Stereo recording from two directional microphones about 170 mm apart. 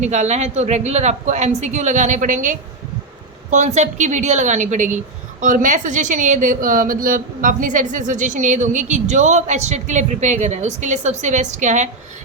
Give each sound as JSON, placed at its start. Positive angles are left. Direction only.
{"t": 0.0, "sound": "speech", "side_deg": -40}